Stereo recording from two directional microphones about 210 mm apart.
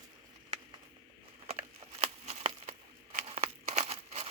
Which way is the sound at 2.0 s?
30° right (ahead or behind).